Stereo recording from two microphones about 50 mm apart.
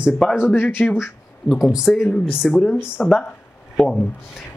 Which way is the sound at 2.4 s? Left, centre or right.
Centre.